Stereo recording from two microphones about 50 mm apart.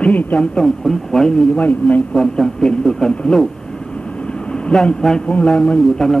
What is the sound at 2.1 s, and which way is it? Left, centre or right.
A man's voice, centre.